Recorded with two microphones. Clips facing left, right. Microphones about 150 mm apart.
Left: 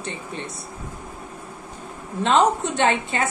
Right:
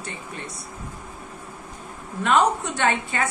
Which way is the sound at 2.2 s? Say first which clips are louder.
Left 2 dB; 25° left (ahead or behind).